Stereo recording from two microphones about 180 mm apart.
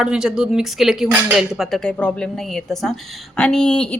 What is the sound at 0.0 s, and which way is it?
Speech, 5° right (ahead or behind).